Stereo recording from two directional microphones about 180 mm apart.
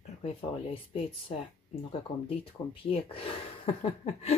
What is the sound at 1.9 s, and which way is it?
Speech, 30° left (ahead or behind).